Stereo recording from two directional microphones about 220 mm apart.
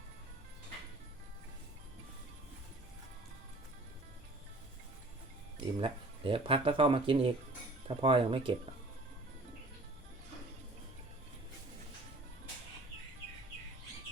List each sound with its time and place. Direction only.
5.5 s speech: 25° right (ahead or behind)